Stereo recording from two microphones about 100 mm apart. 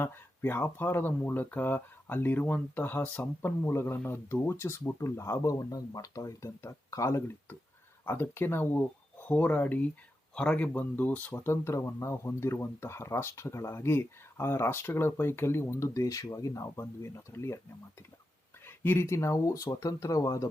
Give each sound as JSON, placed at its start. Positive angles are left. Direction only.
{"t": 0.0, "sound": "speech", "side_deg": 20}
{"t": 18.6, "sound": "speech", "side_deg": 25}